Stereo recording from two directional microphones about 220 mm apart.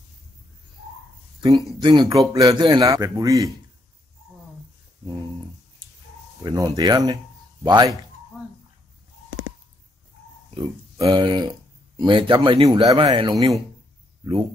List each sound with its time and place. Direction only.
1.8 s a man's voice: 20° right (ahead or behind)
6.4 s a man's voice: 15° right (ahead or behind)
10.5 s speech: 20° right (ahead or behind)